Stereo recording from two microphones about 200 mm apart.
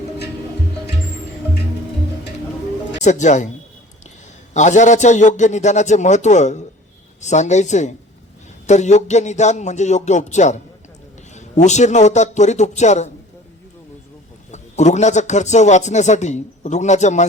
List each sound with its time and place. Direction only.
3.0 s a man's voice: 35° left (ahead or behind)
4.5 s a man's voice: 35° left (ahead or behind)
14.5 s a man's voice: 35° left (ahead or behind)